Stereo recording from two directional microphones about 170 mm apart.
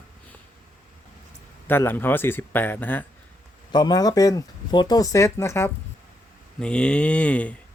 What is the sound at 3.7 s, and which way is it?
Speech, 25° left (ahead or behind).